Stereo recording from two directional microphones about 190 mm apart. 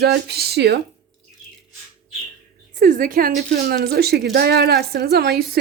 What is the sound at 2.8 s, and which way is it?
A woman's voice, 45° right (ahead or behind).